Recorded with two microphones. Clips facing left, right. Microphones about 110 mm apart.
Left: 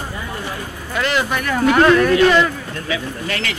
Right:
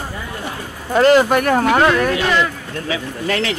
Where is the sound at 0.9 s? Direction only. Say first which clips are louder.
Right 9 dB; 40° right (ahead or behind).